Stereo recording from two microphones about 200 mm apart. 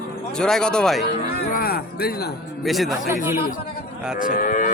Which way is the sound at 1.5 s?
50° left (ahead or behind).